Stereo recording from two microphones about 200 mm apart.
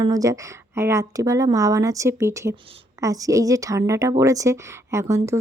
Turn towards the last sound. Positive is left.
turn(degrees=-15)  # may be behind; listen again after turning